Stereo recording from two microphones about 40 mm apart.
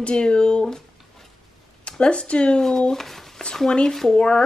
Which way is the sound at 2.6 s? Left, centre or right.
Centre.